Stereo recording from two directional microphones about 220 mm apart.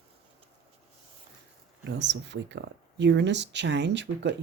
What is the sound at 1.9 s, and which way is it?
Speech, 50° right (ahead or behind).